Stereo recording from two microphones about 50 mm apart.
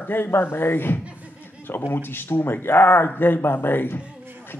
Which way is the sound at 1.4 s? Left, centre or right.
Left.